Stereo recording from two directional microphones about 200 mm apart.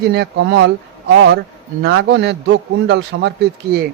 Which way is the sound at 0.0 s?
55° right (ahead or behind).